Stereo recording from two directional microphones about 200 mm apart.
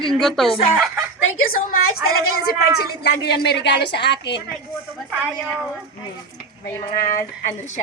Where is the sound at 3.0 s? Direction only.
55° left (ahead or behind).